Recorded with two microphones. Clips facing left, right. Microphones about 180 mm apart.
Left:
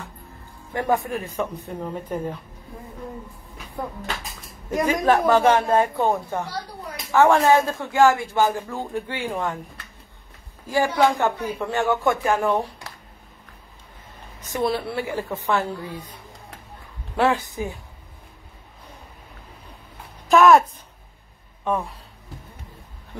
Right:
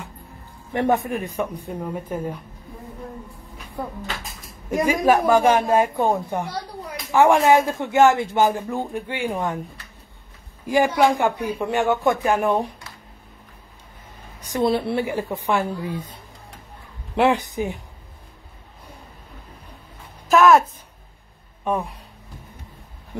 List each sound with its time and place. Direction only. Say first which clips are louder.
0.7 s a man's voice: right 2 dB; 25° right (ahead or behind); by 2.3 s 10° right (ahead or behind)
4.6 s a man's voice: right 2 dB; 10° right (ahead or behind)
10.7 s a man's voice: right 2 dB; 15° right (ahead or behind)
14.4 s a man's voice: right 3 dB; 15° right (ahead or behind)
20.2 s speech: even; centre (ahead or behind)